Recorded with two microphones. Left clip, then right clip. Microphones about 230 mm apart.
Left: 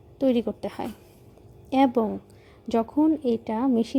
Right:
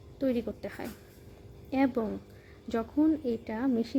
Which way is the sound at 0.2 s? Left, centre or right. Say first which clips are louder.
Left 7 dB; left.